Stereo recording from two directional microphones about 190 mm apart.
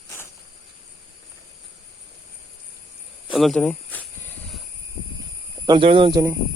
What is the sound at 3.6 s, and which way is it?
Snake, 10° left (ahead or behind).